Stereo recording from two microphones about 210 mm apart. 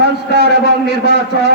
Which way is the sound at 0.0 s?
50° right (ahead or behind).